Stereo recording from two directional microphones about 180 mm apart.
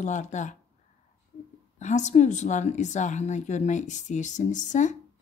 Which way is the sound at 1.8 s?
40° left (ahead or behind).